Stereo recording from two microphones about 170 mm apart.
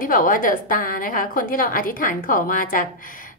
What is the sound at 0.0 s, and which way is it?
A woman's voice, 55° left (ahead or behind).